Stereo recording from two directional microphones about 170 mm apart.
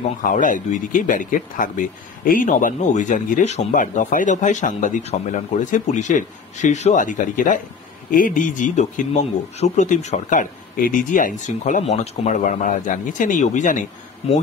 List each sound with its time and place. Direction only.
0.2 s speech: 50° left (ahead or behind)